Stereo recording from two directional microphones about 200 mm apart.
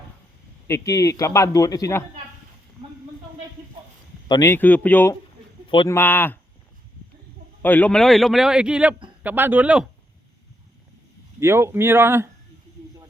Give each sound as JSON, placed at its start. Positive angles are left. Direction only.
{"t": 0.7, "sound": "speech", "side_deg": 15}
{"t": 4.3, "sound": "speech", "side_deg": 15}
{"t": 5.6, "sound": "speech", "side_deg": 25}
{"t": 5.9, "sound": "speech", "side_deg": 10}
{"t": 7.6, "sound": "a man's voice", "side_deg": 10}
{"t": 11.3, "sound": "speech", "side_deg": -10}